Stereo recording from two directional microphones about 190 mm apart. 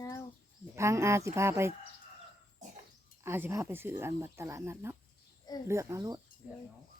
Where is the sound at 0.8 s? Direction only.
15° right (ahead or behind).